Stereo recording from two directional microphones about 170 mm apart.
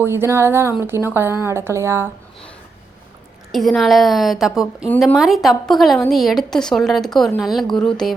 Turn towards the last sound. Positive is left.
turn(degrees=5)  # may be behind; listen again after turning